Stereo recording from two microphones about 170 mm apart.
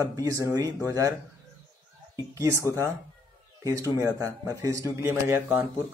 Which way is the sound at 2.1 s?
20° right (ahead or behind).